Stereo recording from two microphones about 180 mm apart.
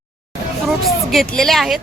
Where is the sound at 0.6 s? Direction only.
Centre (ahead or behind).